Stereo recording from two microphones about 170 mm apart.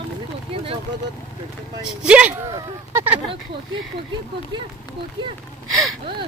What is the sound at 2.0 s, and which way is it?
Speech, 5° right (ahead or behind).